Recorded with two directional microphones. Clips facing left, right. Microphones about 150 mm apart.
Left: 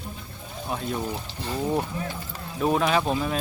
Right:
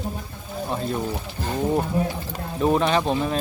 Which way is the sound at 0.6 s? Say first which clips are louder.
Right 2 dB; centre (ahead or behind).